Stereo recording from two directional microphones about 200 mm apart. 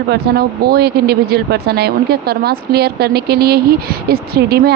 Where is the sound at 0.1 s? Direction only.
50° right (ahead or behind).